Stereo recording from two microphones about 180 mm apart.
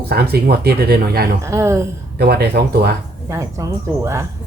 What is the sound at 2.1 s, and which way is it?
Speech, 60° right (ahead or behind).